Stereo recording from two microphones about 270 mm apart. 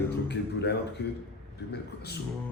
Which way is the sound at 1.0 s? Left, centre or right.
Left.